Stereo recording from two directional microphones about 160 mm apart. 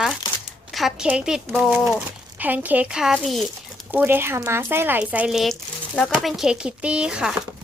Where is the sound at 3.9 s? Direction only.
10° right (ahead or behind).